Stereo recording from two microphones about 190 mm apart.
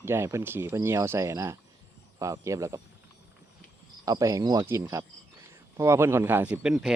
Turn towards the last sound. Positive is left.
turn(degrees=0)  # may be behind; listen again after turning